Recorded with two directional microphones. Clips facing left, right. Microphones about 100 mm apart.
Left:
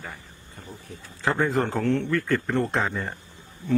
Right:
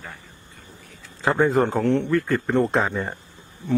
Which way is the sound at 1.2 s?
20° right (ahead or behind).